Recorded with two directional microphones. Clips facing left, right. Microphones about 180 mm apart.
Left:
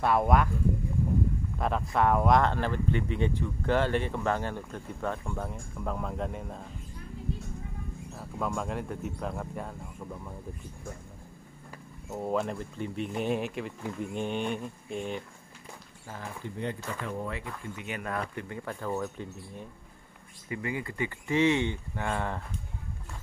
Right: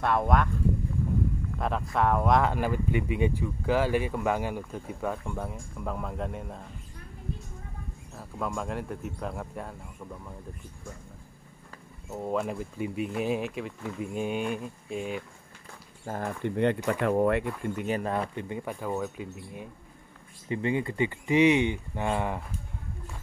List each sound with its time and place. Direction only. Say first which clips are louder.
0.0 s speech: left 1 dB; 5° left (ahead or behind)
1.6 s speech: even; centre (ahead or behind)
8.2 s speech: even; centre (ahead or behind)
12.1 s speech: even; 5° left (ahead or behind)
12.4 s speech: right 1 dB; 5° right (ahead or behind)
16.1 s speech: right 8 dB; 55° right (ahead or behind)
17.8 s speech: right 5 dB; 30° right (ahead or behind)
18.3 s speech: right 3 dB; 20° right (ahead or behind)
20.4 s speech: right 6 dB; 25° right (ahead or behind)